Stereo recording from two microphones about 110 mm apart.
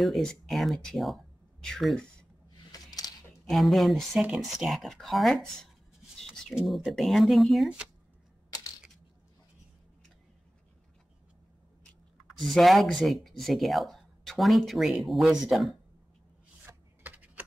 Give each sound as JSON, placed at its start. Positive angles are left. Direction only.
{"t": 0.0, "sound": "speech", "side_deg": 0}
{"t": 2.7, "sound": "a sound", "side_deg": 35}
{"t": 3.4, "sound": "speech", "side_deg": 0}
{"t": 6.1, "sound": "a sound", "side_deg": 5}
{"t": 6.5, "sound": "speech", "side_deg": 0}
{"t": 12.4, "sound": "speech", "side_deg": 0}
{"t": 16.6, "sound": "chopping", "side_deg": -15}